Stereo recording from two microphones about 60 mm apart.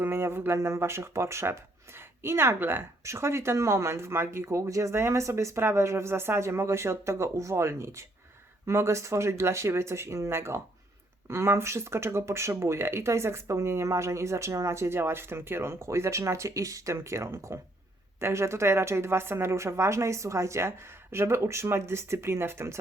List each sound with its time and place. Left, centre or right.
0.0 s speech: right
3.0 s speech: right